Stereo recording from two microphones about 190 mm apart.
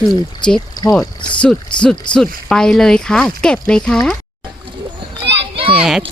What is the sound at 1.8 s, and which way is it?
Speech, 5° left (ahead or behind).